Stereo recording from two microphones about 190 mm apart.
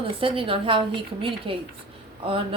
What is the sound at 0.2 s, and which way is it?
A woman's voice, 30° right (ahead or behind).